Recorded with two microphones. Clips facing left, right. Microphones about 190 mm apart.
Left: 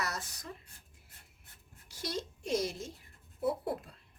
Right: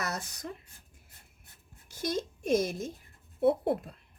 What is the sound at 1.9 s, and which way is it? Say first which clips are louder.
Speech: right 6 dB; 50° right (ahead or behind).